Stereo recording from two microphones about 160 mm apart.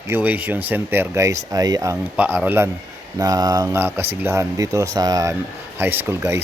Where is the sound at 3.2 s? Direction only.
25° right (ahead or behind).